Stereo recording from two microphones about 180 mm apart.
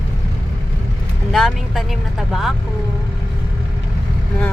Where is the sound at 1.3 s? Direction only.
Centre (ahead or behind).